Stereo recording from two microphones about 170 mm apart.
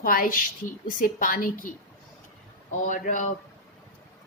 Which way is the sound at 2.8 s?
50° left (ahead or behind).